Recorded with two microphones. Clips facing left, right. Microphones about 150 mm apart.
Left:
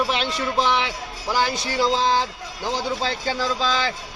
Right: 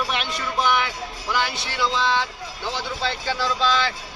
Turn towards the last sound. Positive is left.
turn(degrees=35)  # may be behind; listen again after turning